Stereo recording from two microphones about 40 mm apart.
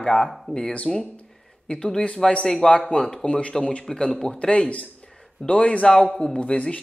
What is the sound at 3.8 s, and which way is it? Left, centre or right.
Speech, centre.